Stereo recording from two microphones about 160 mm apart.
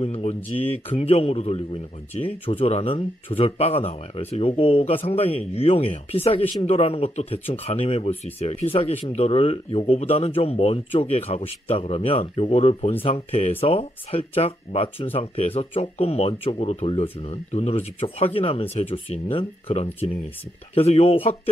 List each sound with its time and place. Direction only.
0.0 s a man's voice: 40° left (ahead or behind)